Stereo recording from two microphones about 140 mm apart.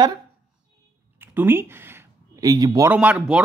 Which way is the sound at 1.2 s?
15° right (ahead or behind).